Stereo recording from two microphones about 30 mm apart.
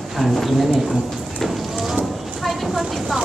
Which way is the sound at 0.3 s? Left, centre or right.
Centre.